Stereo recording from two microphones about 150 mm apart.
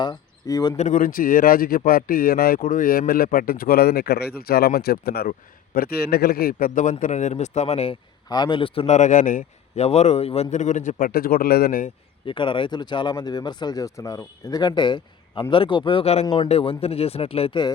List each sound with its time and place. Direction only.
0.0 s speech: 25° left (ahead or behind)
0.8 s speech: 60° left (ahead or behind)
8.3 s speech: 30° left (ahead or behind); by 9.4 s 60° left (ahead or behind)
9.7 s a man's voice: 45° left (ahead or behind); by 11.9 s 80° left
12.2 s speech: 35° left (ahead or behind)